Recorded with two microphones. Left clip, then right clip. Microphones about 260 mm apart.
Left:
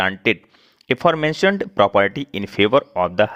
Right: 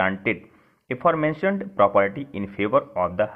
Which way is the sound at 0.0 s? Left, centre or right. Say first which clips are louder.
Left 4 dB; left.